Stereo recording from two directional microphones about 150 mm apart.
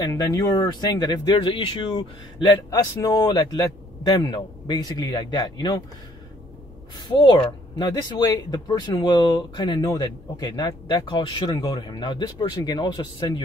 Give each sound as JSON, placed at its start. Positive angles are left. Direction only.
{"t": 0.0, "sound": "speech", "side_deg": 25}
{"t": 7.0, "sound": "speech", "side_deg": 30}